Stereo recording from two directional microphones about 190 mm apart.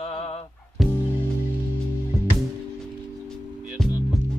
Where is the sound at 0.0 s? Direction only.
30° left (ahead or behind).